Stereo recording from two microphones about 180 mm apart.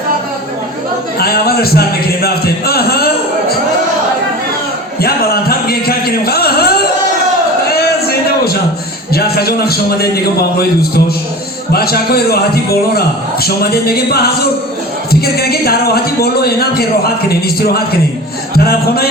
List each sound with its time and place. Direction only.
1.2 s a man's voice: 60° left (ahead or behind)
4.9 s speech: 60° left (ahead or behind)
7.7 s a sound: 60° left (ahead or behind)
9.1 s a man's voice: 60° left (ahead or behind)
11.7 s a man's voice: 60° left (ahead or behind)
13.4 s a man's voice: 60° left (ahead or behind)